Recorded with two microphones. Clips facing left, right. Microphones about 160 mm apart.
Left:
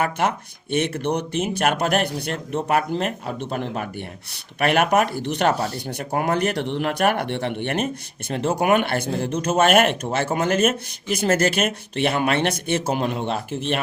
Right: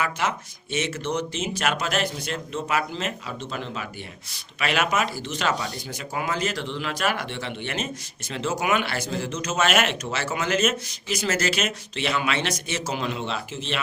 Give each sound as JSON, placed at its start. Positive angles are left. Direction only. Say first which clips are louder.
{"t": 0.0, "sound": "speech", "louder": "left 4 dB", "side_deg": 55}